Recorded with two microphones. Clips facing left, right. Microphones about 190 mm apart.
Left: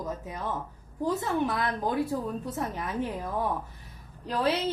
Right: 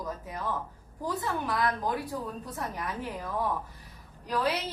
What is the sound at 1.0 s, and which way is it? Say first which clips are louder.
A woman's voice: left 5 dB; 25° left (ahead or behind).